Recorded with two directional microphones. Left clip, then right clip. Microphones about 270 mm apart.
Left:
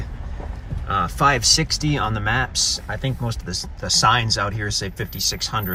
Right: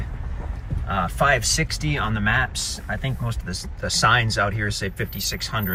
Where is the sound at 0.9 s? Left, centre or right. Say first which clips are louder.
Left 2 dB; centre.